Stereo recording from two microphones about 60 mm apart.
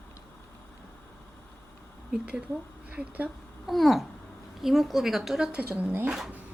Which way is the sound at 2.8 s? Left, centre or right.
Right.